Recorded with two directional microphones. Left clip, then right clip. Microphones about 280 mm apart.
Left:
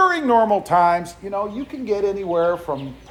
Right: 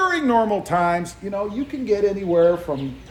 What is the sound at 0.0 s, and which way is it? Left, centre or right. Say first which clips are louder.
A woman's voice: left 3 dB; centre.